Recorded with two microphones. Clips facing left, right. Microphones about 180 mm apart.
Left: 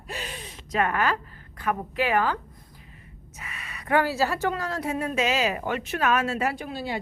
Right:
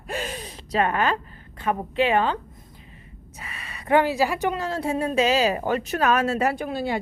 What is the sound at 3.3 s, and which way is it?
A woman's voice, 30° right (ahead or behind).